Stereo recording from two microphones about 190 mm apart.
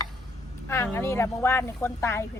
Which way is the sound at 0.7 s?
10° left (ahead or behind).